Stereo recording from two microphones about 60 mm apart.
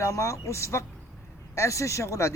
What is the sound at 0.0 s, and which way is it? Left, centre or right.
A man's voice, left.